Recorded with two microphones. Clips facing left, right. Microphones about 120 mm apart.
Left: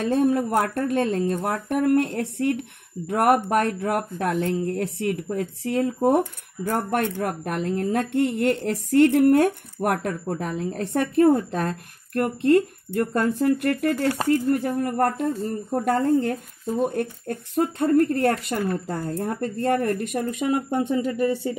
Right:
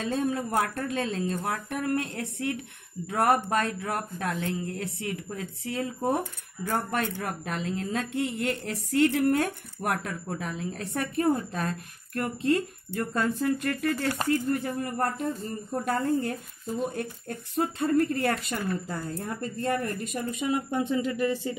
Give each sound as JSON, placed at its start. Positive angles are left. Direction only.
{"t": 0.0, "sound": "speech", "side_deg": 65}